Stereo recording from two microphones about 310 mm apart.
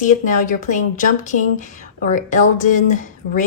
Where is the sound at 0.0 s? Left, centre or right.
Left.